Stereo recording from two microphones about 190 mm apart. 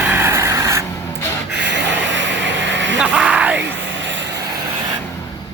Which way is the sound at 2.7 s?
70° right (ahead or behind).